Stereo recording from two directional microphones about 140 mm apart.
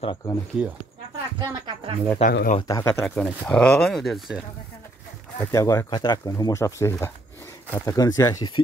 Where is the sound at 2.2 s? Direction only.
50° left (ahead or behind).